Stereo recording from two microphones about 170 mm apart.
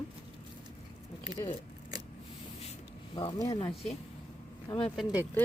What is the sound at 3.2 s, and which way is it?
Speech, 25° left (ahead or behind).